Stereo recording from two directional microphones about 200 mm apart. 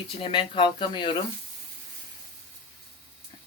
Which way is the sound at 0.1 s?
25° left (ahead or behind).